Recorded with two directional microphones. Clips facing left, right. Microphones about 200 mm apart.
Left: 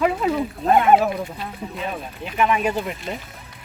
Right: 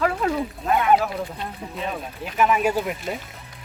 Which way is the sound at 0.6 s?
30° left (ahead or behind).